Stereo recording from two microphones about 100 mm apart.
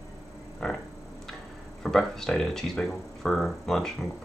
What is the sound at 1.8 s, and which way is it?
Speech, 5° left (ahead or behind).